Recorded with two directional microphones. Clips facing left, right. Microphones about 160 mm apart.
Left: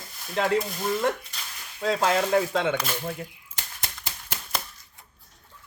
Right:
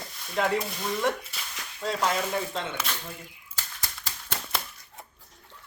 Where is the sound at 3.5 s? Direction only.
15° left (ahead or behind).